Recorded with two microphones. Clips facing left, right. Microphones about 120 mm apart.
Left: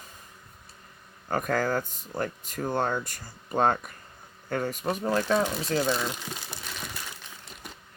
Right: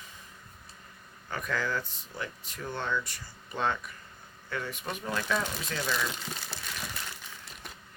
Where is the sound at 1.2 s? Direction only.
45° left (ahead or behind).